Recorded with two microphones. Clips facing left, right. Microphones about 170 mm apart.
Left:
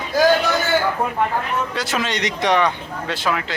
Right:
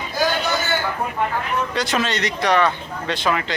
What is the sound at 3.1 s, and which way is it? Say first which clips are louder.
Speech: right 1 dB; 5° left (ahead or behind).